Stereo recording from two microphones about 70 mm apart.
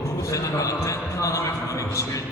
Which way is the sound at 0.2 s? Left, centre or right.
Left.